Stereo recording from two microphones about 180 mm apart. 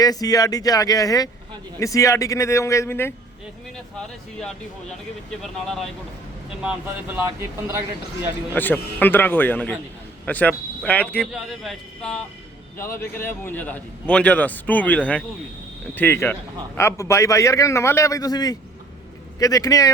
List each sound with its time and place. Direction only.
0.0 s a man's voice: 20° left (ahead or behind)
5.4 s speech: centre (ahead or behind)
7.3 s speech: 15° right (ahead or behind)
8.5 s a man's voice: 10° left (ahead or behind)
12.7 s a man's voice: 15° left (ahead or behind)